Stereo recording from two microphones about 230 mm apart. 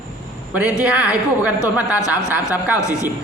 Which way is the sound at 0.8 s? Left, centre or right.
Centre.